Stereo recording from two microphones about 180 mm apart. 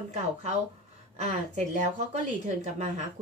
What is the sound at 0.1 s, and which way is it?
Speech, 40° right (ahead or behind).